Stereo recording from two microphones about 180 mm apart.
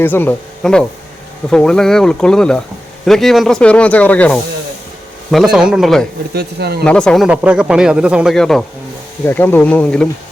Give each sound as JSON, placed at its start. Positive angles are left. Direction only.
{"t": 0.0, "sound": "speech", "side_deg": 10}
{"t": 6.3, "sound": "speech", "side_deg": -60}
{"t": 6.8, "sound": "speech", "side_deg": 5}